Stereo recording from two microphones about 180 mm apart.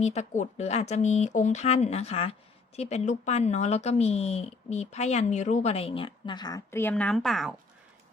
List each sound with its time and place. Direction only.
0.0 s speech: 40° left (ahead or behind); by 7.5 s centre (ahead or behind)